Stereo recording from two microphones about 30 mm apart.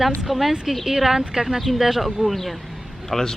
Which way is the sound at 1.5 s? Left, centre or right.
Centre.